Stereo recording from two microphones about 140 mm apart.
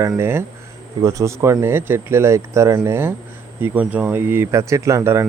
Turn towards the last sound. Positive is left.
turn(degrees=-20)  # may be behind; listen again after turning